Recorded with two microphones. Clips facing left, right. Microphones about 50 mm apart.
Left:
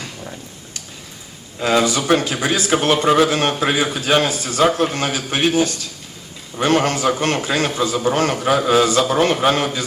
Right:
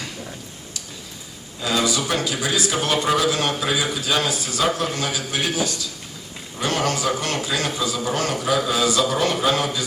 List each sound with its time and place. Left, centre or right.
1.6 s a man's voice: left